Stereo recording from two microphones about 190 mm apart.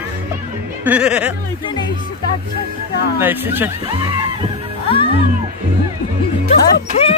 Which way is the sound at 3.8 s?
25° right (ahead or behind).